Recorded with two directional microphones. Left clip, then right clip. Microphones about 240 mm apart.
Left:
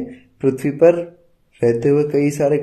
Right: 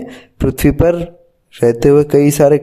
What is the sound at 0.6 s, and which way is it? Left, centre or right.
A man's voice, right.